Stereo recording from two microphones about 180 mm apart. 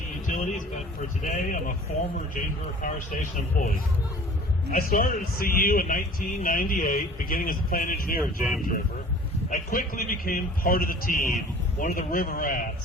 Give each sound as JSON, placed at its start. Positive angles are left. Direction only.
{"t": 0.3, "sound": "a sound", "side_deg": 45}
{"t": 1.0, "sound": "speech", "side_deg": 45}
{"t": 4.7, "sound": "speech", "side_deg": 55}
{"t": 8.2, "sound": "speech", "side_deg": 0}
{"t": 9.5, "sound": "speech", "side_deg": 45}